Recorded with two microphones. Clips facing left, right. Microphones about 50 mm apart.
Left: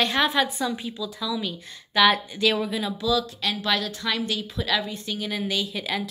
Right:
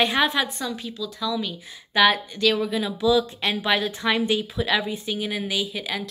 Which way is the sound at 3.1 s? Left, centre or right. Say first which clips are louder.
Right 4 dB; right.